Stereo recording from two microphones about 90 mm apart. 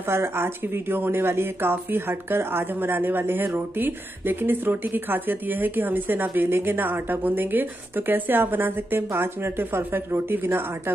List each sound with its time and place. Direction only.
0.1 s speech: 25° right (ahead or behind)